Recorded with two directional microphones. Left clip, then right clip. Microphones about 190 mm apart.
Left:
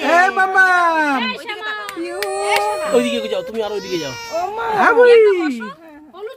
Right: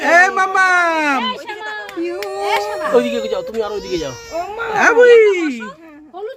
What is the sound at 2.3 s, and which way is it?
A man's voice, 5° right (ahead or behind).